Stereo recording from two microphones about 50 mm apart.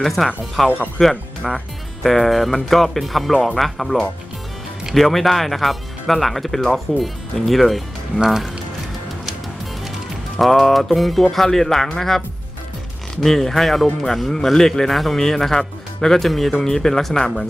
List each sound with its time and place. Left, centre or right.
0.0 s speech: centre
10.4 s speech: centre
13.2 s speech: centre